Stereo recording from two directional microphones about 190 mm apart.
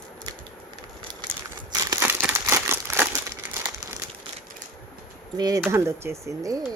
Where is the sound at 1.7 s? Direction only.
20° right (ahead or behind).